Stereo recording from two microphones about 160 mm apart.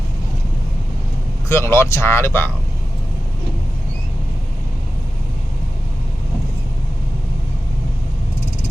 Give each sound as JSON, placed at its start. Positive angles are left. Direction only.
{"t": 1.5, "sound": "speech", "side_deg": 15}